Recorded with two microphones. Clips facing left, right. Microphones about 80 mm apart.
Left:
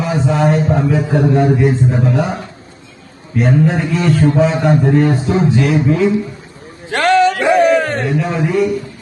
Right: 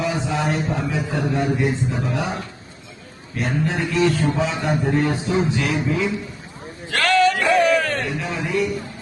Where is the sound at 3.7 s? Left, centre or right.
Left.